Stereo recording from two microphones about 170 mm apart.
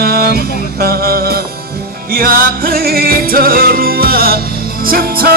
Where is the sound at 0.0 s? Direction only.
65° right (ahead or behind).